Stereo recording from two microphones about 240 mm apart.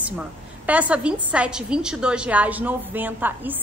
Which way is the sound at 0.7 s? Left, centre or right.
Centre.